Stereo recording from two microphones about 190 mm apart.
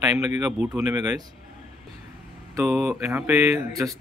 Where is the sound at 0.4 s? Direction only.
5° right (ahead or behind).